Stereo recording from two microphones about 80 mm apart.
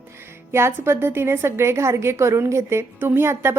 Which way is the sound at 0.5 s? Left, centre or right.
Right.